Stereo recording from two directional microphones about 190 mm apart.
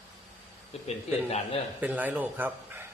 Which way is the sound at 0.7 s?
30° left (ahead or behind).